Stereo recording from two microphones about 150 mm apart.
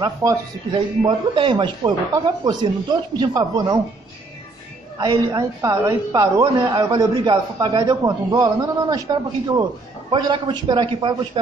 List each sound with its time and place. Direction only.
0.0 s a woman's voice: 20° right (ahead or behind)
0.7 s a man's voice: 35° right (ahead or behind)
4.9 s a woman's voice: 20° right (ahead or behind)